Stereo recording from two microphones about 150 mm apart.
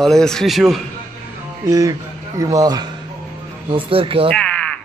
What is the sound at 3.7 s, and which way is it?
Speech, 35° right (ahead or behind).